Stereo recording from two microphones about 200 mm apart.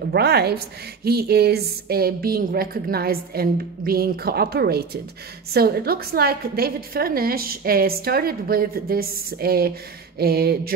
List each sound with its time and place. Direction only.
0.1 s a woman's voice: 55° right (ahead or behind)